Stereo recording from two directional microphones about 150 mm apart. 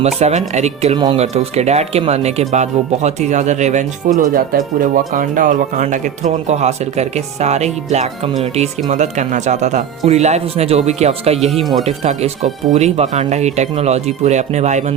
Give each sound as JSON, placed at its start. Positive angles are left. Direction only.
{"t": 0.0, "sound": "speech", "side_deg": -45}
{"t": 4.2, "sound": "speech", "side_deg": -70}